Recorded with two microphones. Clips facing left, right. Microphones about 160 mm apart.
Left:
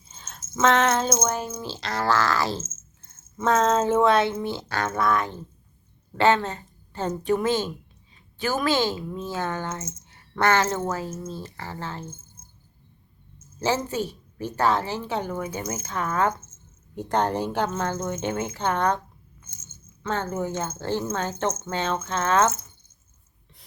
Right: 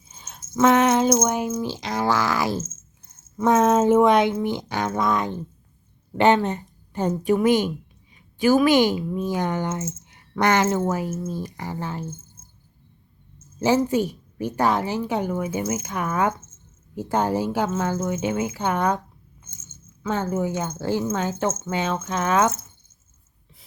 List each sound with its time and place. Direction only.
0.1 s a sound: 10° right (ahead or behind)
0.6 s a woman's voice: 15° right (ahead or behind)
13.6 s a woman's voice: 15° right (ahead or behind)
20.0 s a woman's voice: 10° right (ahead or behind)